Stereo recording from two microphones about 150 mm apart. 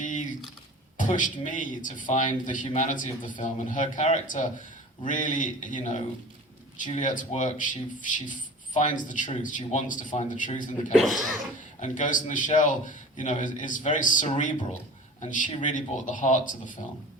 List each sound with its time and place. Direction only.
0.0 s a sound: 55° left (ahead or behind)
0.9 s a man's voice: 60° left (ahead or behind)
10.9 s speech: centre (ahead or behind)
11.8 s a man's voice: 60° left (ahead or behind)